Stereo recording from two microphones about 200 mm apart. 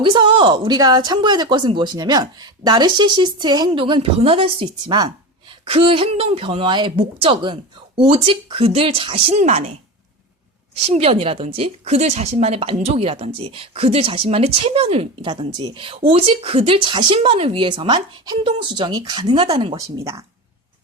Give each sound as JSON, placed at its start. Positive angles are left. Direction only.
{"t": 0.0, "sound": "speech", "side_deg": -25}
{"t": 10.8, "sound": "speech", "side_deg": -30}